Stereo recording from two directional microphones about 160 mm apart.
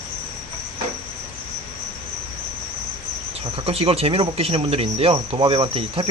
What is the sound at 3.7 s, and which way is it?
Speech, 35° right (ahead or behind).